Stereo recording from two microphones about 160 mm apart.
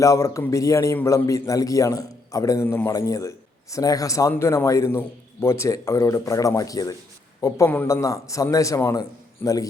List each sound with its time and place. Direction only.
0.0 s a man's voice: 20° left (ahead or behind)